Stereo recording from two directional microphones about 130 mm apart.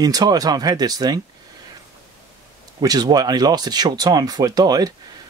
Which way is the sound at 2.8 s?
30° right (ahead or behind).